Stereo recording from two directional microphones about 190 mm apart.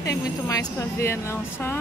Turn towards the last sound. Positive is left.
turn(degrees=15)  # may be behind; listen again after turning